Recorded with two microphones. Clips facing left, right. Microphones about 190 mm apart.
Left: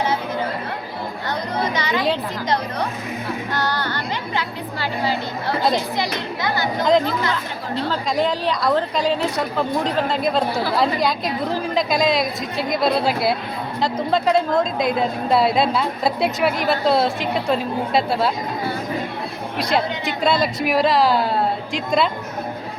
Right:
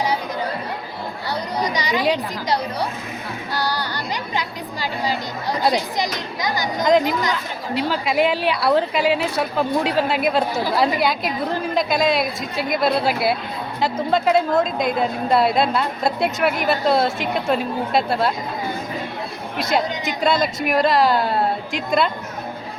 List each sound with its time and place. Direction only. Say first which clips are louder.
1.5 s speech: even; 15° right (ahead or behind)
3.5 s music: right 1 dB; 10° right (ahead or behind)
5.5 s a woman's voice: even; 15° right (ahead or behind)
19.5 s a woman's voice: even; centre (ahead or behind)